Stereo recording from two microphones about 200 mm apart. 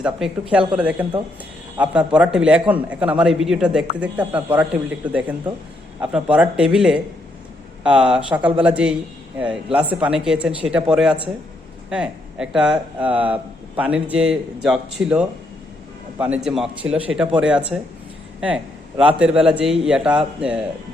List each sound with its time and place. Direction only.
0.0 s speech: 5° right (ahead or behind)
16.8 s a man's voice: 15° right (ahead or behind)